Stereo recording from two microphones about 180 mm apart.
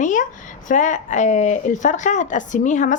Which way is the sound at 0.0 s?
45° left (ahead or behind).